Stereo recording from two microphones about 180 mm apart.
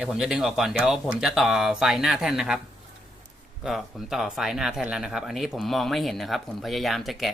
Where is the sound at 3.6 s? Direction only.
Centre (ahead or behind).